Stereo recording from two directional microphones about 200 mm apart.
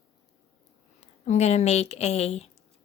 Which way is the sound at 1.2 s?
35° left (ahead or behind).